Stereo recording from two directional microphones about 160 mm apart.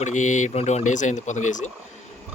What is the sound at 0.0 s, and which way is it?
Speech, 50° left (ahead or behind).